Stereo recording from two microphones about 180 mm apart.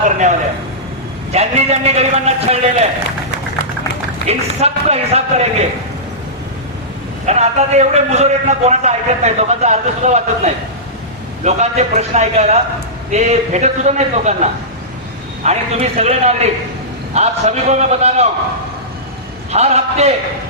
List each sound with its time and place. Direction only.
1.3 s a man's voice: 35° right (ahead or behind)
4.3 s a man's voice: 35° right (ahead or behind)
7.3 s a man's voice: 40° right (ahead or behind)
15.4 s a man's voice: 35° right (ahead or behind)
19.5 s a man's voice: 35° right (ahead or behind)